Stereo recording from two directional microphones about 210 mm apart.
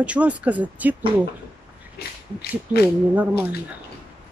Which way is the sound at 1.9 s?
50° left (ahead or behind).